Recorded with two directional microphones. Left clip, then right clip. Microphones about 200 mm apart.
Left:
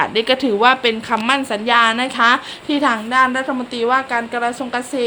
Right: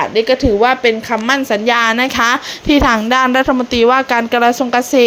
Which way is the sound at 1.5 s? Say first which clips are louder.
Right 1 dB; 25° right (ahead or behind).